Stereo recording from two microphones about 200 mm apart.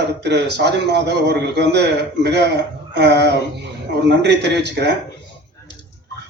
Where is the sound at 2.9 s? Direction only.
60° right (ahead or behind).